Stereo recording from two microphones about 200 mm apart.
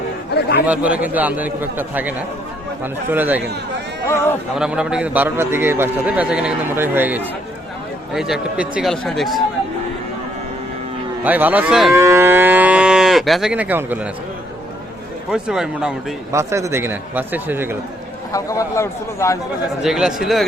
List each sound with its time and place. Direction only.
0.7 s a man's voice: 5° right (ahead or behind)
4.1 s speech: 15° left (ahead or behind)
4.5 s a man's voice: 5° right (ahead or behind)
11.2 s a man's voice: 10° right (ahead or behind)
11.9 s a man's voice: 15° right (ahead or behind)
15.3 s speech: 5° right (ahead or behind)
16.3 s a man's voice: 15° right (ahead or behind)
18.3 s speech: 15° left (ahead or behind)
19.8 s speech: centre (ahead or behind)